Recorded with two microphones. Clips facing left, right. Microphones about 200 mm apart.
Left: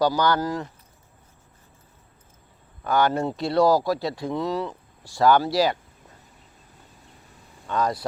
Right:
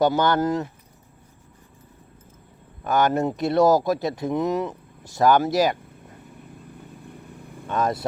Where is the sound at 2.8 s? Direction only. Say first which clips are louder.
Right 1 dB; 20° right (ahead or behind).